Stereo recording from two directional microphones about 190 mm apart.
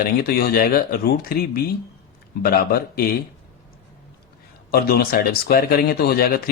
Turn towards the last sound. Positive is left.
turn(degrees=55)  # may be behind; listen again after turning